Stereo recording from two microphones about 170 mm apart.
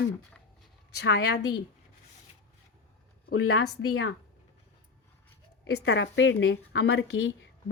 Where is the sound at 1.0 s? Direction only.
85° left.